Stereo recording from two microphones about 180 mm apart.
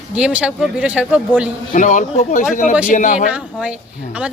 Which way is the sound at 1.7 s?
45° left (ahead or behind).